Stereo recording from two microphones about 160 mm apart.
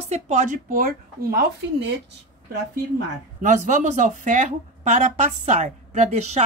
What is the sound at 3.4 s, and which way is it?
Speech, 50° right (ahead or behind).